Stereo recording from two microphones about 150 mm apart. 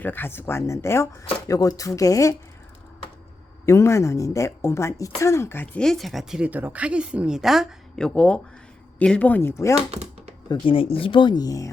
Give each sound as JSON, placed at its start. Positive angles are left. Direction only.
{"t": 0.0, "sound": "speech", "side_deg": 15}
{"t": 3.7, "sound": "speech", "side_deg": 20}
{"t": 5.8, "sound": "speech", "side_deg": 0}
{"t": 9.9, "sound": "chopping", "side_deg": -45}
{"t": 10.5, "sound": "speech", "side_deg": 35}